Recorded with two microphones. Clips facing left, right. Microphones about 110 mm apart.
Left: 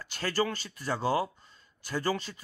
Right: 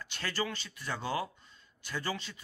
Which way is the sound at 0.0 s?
40° left (ahead or behind).